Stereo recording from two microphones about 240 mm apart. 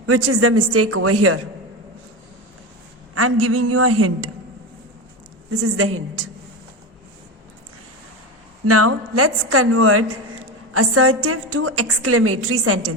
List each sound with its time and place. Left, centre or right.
0.0 s a woman's voice: right
3.2 s a woman's voice: right
5.5 s a woman's voice: right
8.6 s a woman's voice: right